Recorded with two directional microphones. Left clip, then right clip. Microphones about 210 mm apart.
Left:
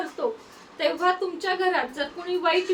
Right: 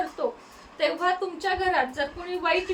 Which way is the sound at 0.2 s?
5° left (ahead or behind).